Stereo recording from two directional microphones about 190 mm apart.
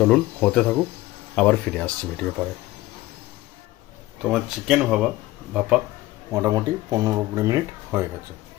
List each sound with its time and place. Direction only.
0.0 s speech: 5° left (ahead or behind)
4.2 s speech: 5° right (ahead or behind)